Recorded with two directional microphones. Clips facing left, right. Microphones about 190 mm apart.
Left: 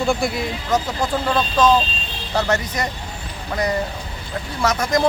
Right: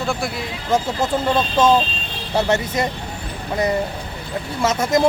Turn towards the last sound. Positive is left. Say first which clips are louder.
# right 2 dB
turn(degrees=-25)  # may be behind; listen again after turning